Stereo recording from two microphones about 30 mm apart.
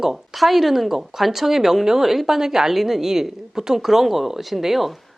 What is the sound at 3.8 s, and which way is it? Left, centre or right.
A woman's voice, centre.